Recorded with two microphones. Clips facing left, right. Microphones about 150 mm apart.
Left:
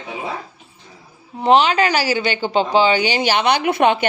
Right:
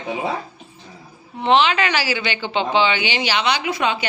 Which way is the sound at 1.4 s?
40° left (ahead or behind).